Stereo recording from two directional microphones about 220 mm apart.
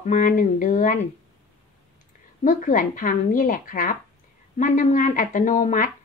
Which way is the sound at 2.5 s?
35° left (ahead or behind).